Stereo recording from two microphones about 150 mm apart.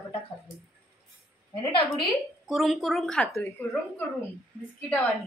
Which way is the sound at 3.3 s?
20° left (ahead or behind).